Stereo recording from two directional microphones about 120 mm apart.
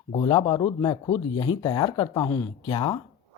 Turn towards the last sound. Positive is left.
turn(degrees=35)  # may be behind; listen again after turning